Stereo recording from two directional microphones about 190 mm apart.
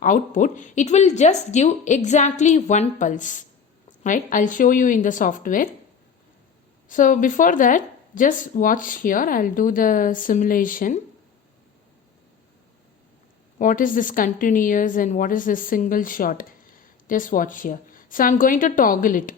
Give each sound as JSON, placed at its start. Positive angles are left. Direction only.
{"t": 0.0, "sound": "a woman's voice", "side_deg": 45}
{"t": 6.8, "sound": "speech", "side_deg": 45}
{"t": 13.6, "sound": "speech", "side_deg": 45}